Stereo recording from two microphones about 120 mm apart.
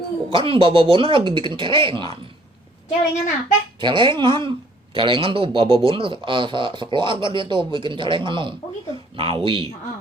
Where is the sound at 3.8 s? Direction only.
40° right (ahead or behind).